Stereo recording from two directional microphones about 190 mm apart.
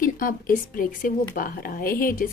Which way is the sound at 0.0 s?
45° left (ahead or behind).